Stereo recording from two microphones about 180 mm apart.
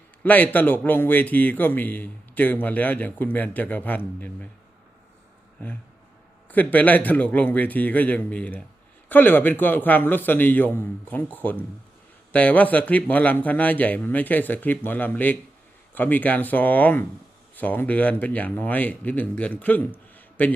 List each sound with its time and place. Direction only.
0.2 s a man's voice: 10° left (ahead or behind)
6.5 s a man's voice: 10° left (ahead or behind)
20.1 s a sound: 10° left (ahead or behind)